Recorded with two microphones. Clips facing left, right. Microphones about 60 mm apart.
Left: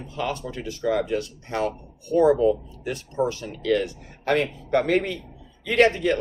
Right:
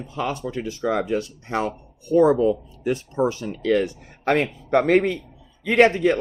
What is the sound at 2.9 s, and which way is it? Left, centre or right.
Speech, right.